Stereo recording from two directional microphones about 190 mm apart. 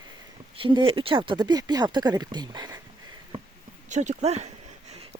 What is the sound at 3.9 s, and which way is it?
Speech, 40° right (ahead or behind).